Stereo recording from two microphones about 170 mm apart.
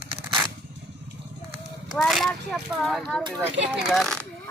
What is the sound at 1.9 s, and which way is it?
Speech, centre (ahead or behind).